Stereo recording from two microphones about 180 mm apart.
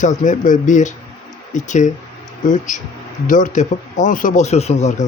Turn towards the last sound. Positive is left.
turn(degrees=40)  # may be behind; listen again after turning